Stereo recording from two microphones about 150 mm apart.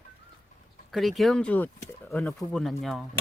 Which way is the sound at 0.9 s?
Centre (ahead or behind).